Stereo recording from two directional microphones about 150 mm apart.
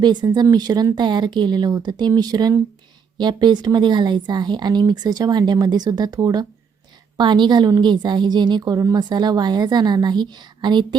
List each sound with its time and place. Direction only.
0.0 s a woman's voice: 30° right (ahead or behind)